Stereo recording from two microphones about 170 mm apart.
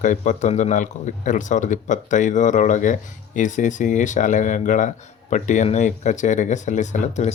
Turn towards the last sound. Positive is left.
turn(degrees=45)  # may be behind; listen again after turning